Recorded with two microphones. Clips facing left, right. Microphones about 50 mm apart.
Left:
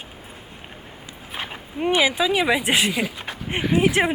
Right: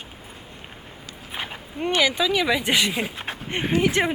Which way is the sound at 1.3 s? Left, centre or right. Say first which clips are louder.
Left 1 dB; centre.